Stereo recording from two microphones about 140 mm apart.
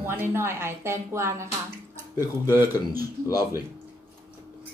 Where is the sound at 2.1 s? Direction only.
25° left (ahead or behind).